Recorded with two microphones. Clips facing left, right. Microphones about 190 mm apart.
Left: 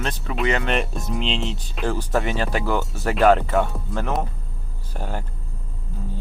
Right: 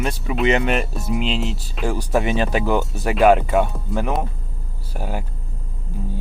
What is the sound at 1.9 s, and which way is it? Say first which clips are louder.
Speech: right 3 dB; 15° right (ahead or behind).